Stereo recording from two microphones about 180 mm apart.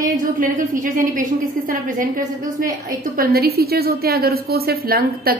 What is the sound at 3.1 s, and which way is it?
A woman's voice, 55° right (ahead or behind).